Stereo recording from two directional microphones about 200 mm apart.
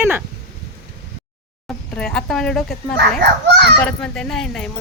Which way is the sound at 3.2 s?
60° right (ahead or behind).